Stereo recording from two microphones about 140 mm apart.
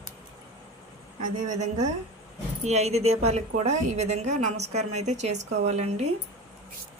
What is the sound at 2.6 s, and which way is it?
A woman's voice, 50° right (ahead or behind).